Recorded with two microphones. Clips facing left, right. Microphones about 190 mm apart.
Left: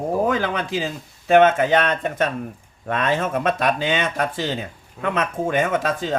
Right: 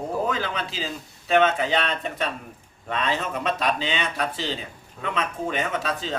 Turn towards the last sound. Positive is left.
turn(degrees=50)  # may be behind; listen again after turning